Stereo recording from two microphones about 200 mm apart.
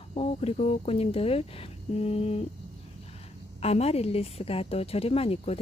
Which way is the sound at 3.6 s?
30° left (ahead or behind).